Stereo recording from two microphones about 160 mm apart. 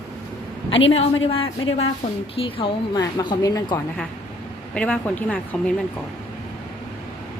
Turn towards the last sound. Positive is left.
turn(degrees=10)  # may be behind; listen again after turning